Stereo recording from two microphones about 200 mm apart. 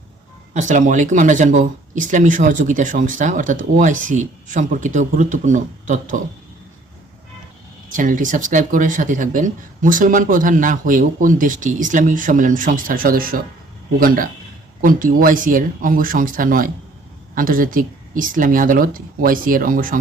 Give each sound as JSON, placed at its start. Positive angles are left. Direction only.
{"t": 0.5, "sound": "speech", "side_deg": -40}
{"t": 7.9, "sound": "speech", "side_deg": -40}
{"t": 14.8, "sound": "speech", "side_deg": -45}